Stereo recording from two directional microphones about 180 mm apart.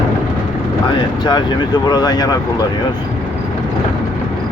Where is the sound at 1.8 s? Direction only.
20° left (ahead or behind).